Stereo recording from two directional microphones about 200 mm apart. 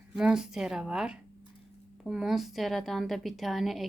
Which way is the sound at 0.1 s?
5° right (ahead or behind).